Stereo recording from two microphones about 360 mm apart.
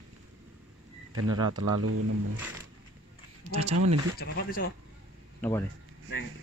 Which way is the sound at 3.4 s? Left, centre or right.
Centre.